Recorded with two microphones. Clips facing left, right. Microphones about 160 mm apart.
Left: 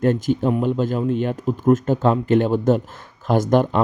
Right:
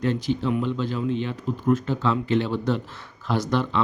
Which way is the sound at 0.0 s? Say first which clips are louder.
Left 5 dB; 50° left (ahead or behind).